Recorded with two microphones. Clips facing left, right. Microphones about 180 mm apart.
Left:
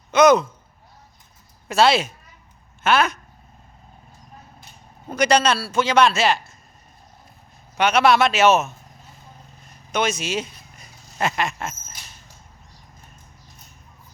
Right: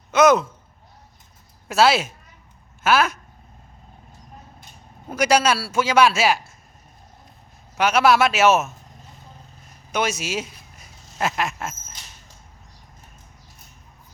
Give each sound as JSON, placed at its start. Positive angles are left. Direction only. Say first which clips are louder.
{"t": 0.1, "sound": "speech", "louder": "left 1 dB", "side_deg": -5}
{"t": 1.6, "sound": "speech", "louder": "even", "side_deg": -5}
{"t": 5.0, "sound": "a man's voice", "louder": "even", "side_deg": -5}
{"t": 7.8, "sound": "speech", "louder": "even", "side_deg": -5}
{"t": 9.9, "sound": "a sound", "louder": "left 1 dB", "side_deg": -10}